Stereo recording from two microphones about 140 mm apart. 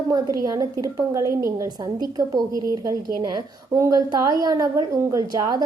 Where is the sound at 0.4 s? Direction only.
25° right (ahead or behind).